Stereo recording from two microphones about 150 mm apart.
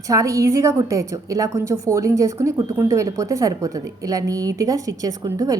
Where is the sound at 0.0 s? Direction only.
20° right (ahead or behind).